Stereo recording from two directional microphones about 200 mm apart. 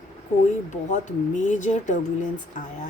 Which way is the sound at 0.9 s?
40° left (ahead or behind).